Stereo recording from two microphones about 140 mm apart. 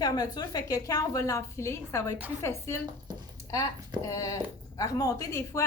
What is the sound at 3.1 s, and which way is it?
Speech, 30° right (ahead or behind).